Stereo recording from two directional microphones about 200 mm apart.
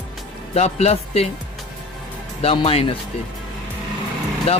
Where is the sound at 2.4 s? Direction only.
30° left (ahead or behind).